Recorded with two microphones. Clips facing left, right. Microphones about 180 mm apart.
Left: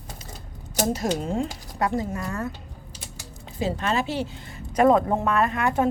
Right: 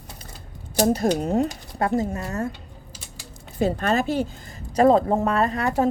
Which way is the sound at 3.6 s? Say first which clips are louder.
Right 4 dB; 45° right (ahead or behind).